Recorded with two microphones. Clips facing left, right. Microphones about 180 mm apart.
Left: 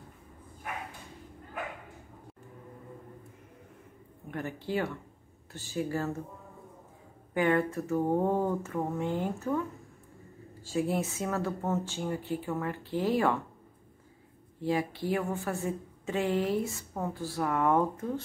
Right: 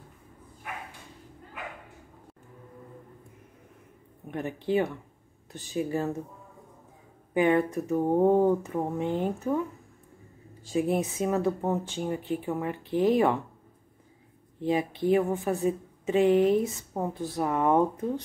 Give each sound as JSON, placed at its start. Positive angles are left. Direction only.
{"t": 4.3, "sound": "speech", "side_deg": -20}
{"t": 7.3, "sound": "speech", "side_deg": -15}
{"t": 14.6, "sound": "speech", "side_deg": -20}